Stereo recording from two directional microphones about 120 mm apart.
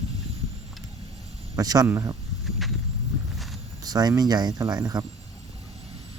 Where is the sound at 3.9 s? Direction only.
30° right (ahead or behind).